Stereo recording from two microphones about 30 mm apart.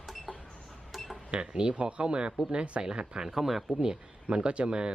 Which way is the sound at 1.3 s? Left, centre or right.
Right.